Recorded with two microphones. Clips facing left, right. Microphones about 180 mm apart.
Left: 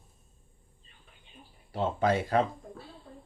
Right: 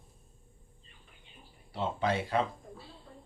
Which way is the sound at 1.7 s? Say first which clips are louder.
Left 4 dB; 45° left (ahead or behind).